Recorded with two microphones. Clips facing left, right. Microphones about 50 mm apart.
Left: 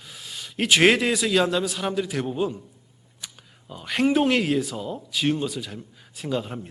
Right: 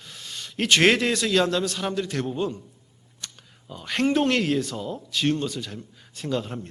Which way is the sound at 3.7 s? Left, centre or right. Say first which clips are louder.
Left 1 dB; centre.